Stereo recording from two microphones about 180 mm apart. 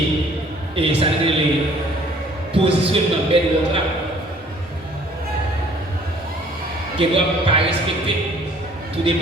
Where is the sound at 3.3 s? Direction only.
30° right (ahead or behind).